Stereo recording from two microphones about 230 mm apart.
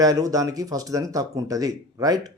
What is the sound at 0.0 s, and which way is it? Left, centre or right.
A man's voice, centre.